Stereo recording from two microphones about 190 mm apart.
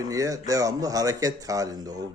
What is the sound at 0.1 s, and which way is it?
A man's voice, 20° right (ahead or behind).